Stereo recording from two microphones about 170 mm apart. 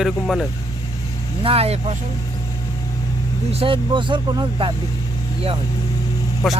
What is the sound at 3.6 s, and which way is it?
Speech, 30° right (ahead or behind).